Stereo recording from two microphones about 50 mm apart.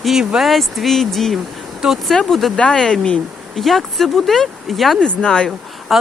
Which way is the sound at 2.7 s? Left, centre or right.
Centre.